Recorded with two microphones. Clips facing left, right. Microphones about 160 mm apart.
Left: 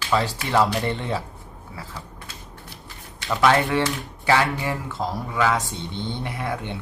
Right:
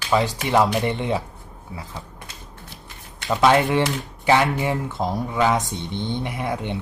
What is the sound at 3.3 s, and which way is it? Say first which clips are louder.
Speech: right 2 dB; 20° right (ahead or behind).